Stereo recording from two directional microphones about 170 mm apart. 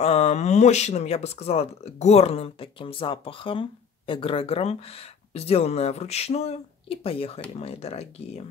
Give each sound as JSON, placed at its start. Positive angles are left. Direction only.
{"t": 0.0, "sound": "speech", "side_deg": 40}